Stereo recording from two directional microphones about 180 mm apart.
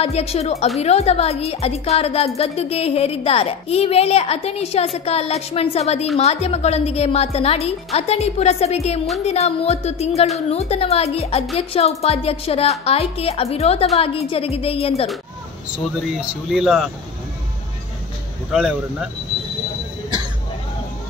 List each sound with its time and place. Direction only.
0.0 s speech: 35° left (ahead or behind)
15.7 s speech: 5° right (ahead or behind)
18.5 s speech: 5° right (ahead or behind)